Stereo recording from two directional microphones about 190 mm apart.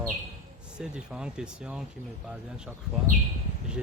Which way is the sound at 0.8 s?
5° right (ahead or behind).